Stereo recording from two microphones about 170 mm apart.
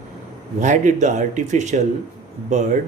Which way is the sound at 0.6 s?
45° right (ahead or behind).